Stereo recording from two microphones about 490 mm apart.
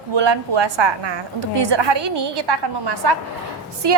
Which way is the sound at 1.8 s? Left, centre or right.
Right.